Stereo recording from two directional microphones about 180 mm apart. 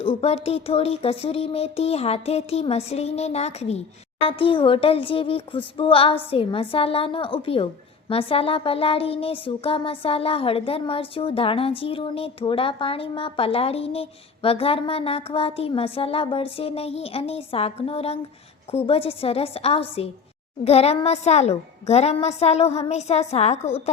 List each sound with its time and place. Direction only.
0.0 s speech: 35° left (ahead or behind)